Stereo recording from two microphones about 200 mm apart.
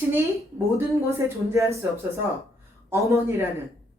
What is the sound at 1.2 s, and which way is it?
Speech, 15° right (ahead or behind).